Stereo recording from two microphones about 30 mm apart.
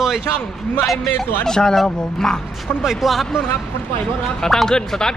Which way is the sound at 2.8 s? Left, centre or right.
Centre.